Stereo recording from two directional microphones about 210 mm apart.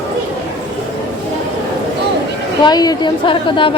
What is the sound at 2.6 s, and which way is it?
A woman's voice, 20° left (ahead or behind).